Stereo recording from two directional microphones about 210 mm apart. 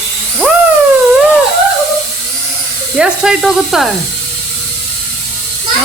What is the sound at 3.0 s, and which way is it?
Speech, 5° right (ahead or behind).